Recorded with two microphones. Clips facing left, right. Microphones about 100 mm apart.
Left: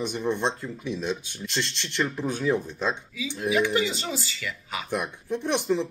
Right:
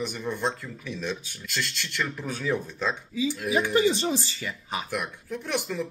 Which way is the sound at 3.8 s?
40° right (ahead or behind).